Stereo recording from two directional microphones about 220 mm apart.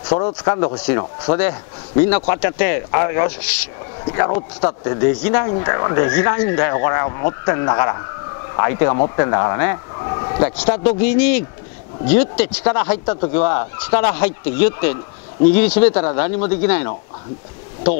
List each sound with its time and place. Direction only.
0.4 s a man's voice: 15° left (ahead or behind)
10.5 s speech: 10° left (ahead or behind)